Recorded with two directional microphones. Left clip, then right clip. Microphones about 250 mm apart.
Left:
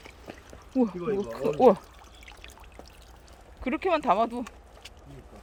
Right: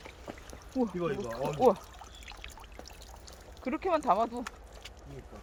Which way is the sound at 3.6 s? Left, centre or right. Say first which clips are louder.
Left 4 dB; left.